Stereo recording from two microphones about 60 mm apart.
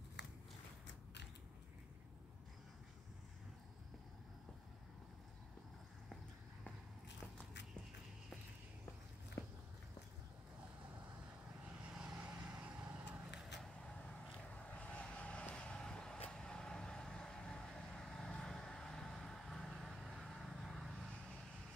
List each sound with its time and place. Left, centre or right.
9.4 s walk: left
11.7 s vehicle: centre
14.5 s vehicle: left